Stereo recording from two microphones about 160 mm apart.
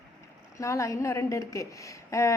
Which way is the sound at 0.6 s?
20° left (ahead or behind).